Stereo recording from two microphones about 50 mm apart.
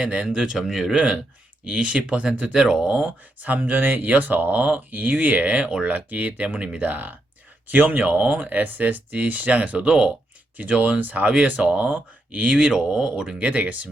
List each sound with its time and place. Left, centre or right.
0.0 s speech: centre
0.6 s speech: centre
0.9 s speech: centre
3.4 s speech: right; by 10.1 s centre
10.6 s speech: right
13.4 s speech: right